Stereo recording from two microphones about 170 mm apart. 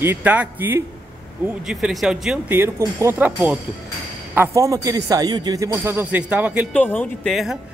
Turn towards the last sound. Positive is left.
turn(degrees=0)  # may be behind; listen again after turning